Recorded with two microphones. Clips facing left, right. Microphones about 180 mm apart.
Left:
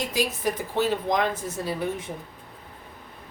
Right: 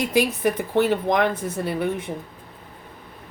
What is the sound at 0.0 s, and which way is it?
A woman's voice, 60° right (ahead or behind).